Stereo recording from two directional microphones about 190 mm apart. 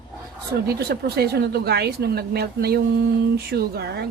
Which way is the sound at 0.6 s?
55° right (ahead or behind).